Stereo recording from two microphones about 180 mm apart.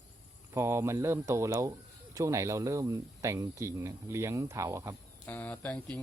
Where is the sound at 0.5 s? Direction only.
15° right (ahead or behind).